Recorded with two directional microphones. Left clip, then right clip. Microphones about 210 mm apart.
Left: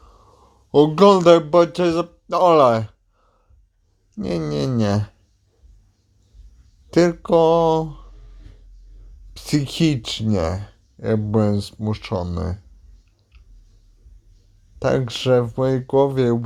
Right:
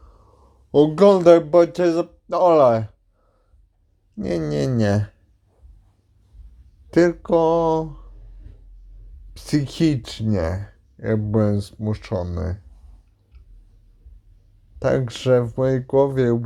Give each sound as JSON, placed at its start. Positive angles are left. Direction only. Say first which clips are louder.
{"t": 0.0, "sound": "speech", "louder": "left 4 dB", "side_deg": 10}
{"t": 6.9, "sound": "speech", "louder": "left 1 dB", "side_deg": 5}
{"t": 9.3, "sound": "speech", "louder": "left 1 dB", "side_deg": 5}
{"t": 14.8, "sound": "speech", "louder": "left 1 dB", "side_deg": 5}